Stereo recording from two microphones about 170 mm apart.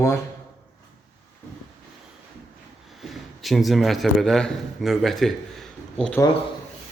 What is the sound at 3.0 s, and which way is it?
A man's voice, centre (ahead or behind).